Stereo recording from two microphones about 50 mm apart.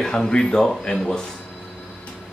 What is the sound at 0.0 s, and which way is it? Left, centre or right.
Speech, centre.